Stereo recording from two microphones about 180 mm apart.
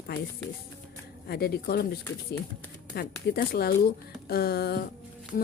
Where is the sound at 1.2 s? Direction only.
60° left (ahead or behind).